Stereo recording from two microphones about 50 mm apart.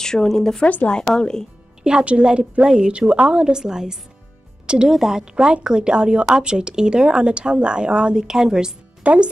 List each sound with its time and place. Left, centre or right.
0.0 s speech: centre
1.8 s a woman's voice: centre
9.0 s speech: right